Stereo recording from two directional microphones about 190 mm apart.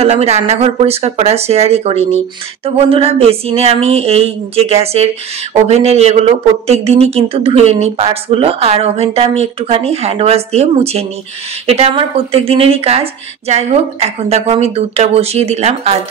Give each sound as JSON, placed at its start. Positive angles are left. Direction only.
{"t": 0.0, "sound": "speech", "side_deg": -35}